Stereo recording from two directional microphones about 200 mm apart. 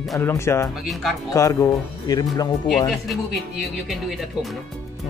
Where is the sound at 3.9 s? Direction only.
Centre (ahead or behind).